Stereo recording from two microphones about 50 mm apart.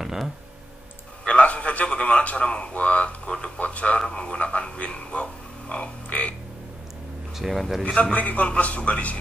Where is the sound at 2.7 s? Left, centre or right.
Left.